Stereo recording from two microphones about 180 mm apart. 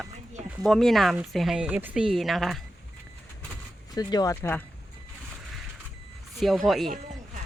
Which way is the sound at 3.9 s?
20° left (ahead or behind).